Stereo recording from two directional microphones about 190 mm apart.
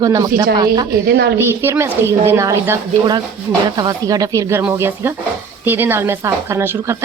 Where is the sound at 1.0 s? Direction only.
60° right (ahead or behind).